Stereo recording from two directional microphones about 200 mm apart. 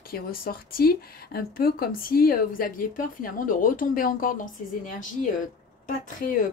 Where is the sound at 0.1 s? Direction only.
45° left (ahead or behind).